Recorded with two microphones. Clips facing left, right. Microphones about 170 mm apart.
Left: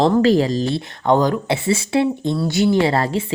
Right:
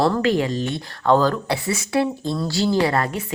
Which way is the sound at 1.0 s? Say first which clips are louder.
Left 1 dB; 20° left (ahead or behind).